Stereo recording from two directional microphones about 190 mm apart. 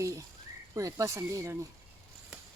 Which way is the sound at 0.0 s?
15° right (ahead or behind).